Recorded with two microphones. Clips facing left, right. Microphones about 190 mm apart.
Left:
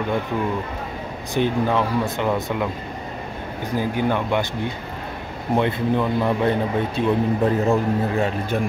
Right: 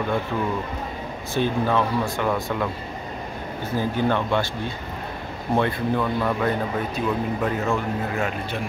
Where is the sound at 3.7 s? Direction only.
15° left (ahead or behind); by 8.3 s 35° left (ahead or behind).